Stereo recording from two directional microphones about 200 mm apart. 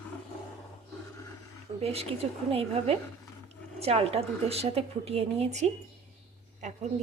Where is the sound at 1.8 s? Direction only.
30° right (ahead or behind).